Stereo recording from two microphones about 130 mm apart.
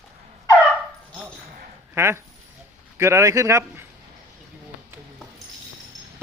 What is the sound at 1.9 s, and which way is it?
Speech, 20° right (ahead or behind).